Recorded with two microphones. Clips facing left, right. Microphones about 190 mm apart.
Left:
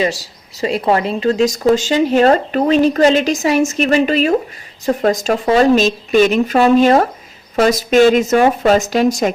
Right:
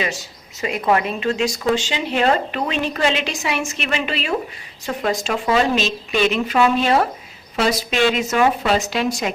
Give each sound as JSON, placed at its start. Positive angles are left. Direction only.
{"t": 0.0, "sound": "speech", "side_deg": 35}